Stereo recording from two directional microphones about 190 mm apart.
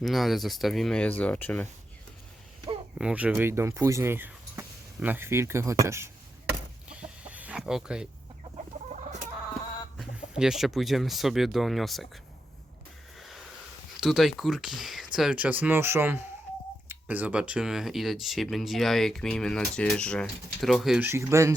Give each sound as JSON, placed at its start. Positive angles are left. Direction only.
{"t": 0.0, "sound": "speech", "side_deg": 0}
{"t": 3.0, "sound": "speech", "side_deg": -5}
{"t": 6.8, "sound": "chicken", "side_deg": -5}
{"t": 8.9, "sound": "chicken", "side_deg": -40}
{"t": 10.0, "sound": "speech", "side_deg": -5}
{"t": 14.0, "sound": "speech", "side_deg": 0}